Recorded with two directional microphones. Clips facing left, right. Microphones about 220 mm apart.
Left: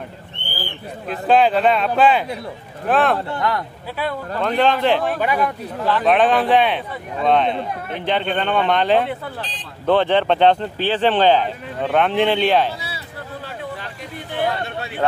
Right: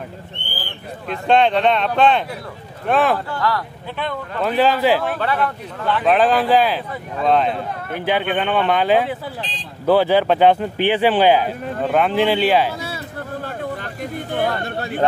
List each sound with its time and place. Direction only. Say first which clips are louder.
1.1 s a man's voice: even; 5° left (ahead or behind)
3.3 s speech: even; 20° left (ahead or behind)
4.4 s a man's voice: right 1 dB; 5° right (ahead or behind)
5.2 s speech: left 1 dB; 10° left (ahead or behind)
5.9 s a man's voice: even; centre (ahead or behind)
14.1 s speech: right 1 dB; 50° right (ahead or behind)